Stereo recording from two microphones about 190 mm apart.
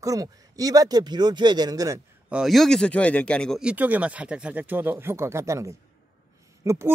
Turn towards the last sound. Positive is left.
turn(degrees=-15)  # may be behind; listen again after turning